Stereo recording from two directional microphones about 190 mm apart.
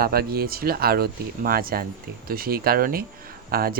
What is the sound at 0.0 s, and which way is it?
Speech, 55° right (ahead or behind).